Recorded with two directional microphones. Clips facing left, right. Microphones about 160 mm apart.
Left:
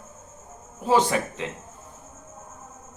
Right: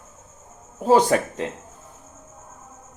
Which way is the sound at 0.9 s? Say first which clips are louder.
Right 4 dB; 40° right (ahead or behind).